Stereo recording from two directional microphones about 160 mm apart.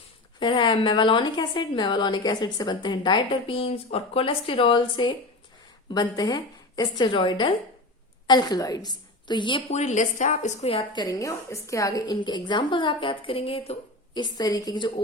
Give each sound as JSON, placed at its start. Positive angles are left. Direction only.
{"t": 0.3, "sound": "a woman's voice", "side_deg": 30}
{"t": 9.6, "sound": "a woman's voice", "side_deg": 45}